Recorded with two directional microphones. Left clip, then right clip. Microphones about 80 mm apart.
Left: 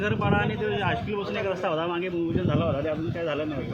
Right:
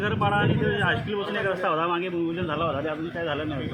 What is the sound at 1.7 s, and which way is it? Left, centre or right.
Speech, centre.